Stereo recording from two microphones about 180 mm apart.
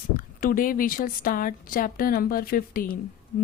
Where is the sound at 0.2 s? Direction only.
50° left (ahead or behind).